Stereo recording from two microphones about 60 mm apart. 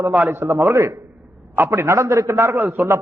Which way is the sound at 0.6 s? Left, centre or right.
Right.